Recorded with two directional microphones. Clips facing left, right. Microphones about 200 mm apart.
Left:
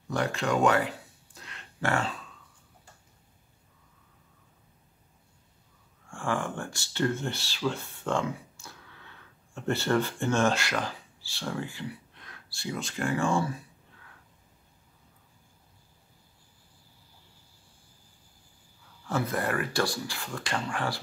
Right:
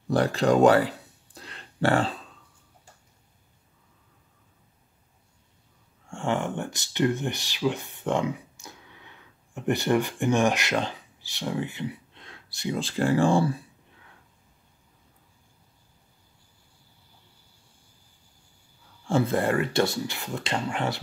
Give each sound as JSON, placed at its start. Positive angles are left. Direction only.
{"t": 0.1, "sound": "a sound", "side_deg": -35}
{"t": 6.0, "sound": "speech", "side_deg": -25}
{"t": 19.0, "sound": "speech", "side_deg": -25}